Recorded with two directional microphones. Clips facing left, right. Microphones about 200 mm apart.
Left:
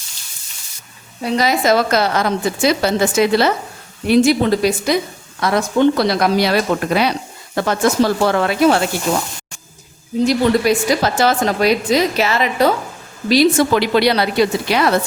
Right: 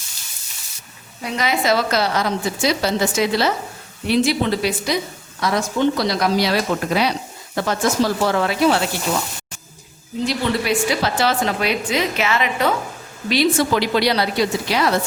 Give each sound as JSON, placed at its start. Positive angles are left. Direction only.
{"t": 1.2, "sound": "a woman's voice", "side_deg": 40}
{"t": 5.4, "sound": "speech", "side_deg": 60}
{"t": 10.2, "sound": "a woman's voice", "side_deg": 45}
{"t": 13.7, "sound": "speech", "side_deg": 60}